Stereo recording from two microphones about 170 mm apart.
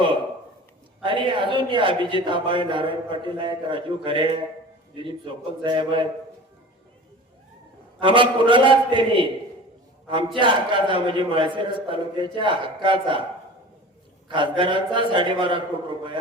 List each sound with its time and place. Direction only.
1.0 s a man's voice: 30° right (ahead or behind)
7.9 s a man's voice: 30° right (ahead or behind)
10.3 s a man's voice: 30° right (ahead or behind)
14.3 s a man's voice: 30° right (ahead or behind)